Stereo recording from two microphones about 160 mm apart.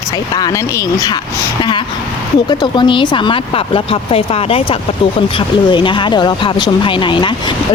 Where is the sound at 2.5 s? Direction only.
30° left (ahead or behind).